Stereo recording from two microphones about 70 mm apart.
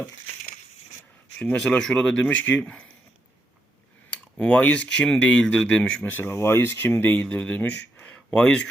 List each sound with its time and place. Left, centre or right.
1.5 s speech: centre
4.1 s speech: centre
6.1 s speech: left; by 8.7 s centre